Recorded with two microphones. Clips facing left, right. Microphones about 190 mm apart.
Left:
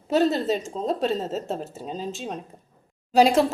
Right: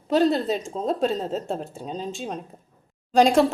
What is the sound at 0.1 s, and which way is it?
A woman's voice, 5° left (ahead or behind).